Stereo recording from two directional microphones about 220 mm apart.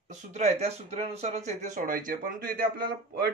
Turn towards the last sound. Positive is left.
turn(degrees=-45)  # may be behind; listen again after turning